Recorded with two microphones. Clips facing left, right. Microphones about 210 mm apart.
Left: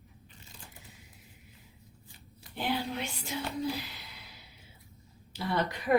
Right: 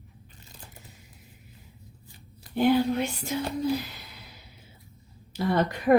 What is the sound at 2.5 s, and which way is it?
Speech, 45° right (ahead or behind).